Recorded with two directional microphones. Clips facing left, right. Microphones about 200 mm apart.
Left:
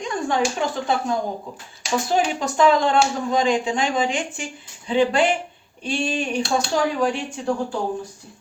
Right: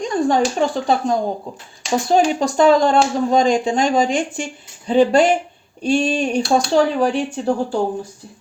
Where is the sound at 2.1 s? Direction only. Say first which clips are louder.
Right 6 dB; 35° right (ahead or behind).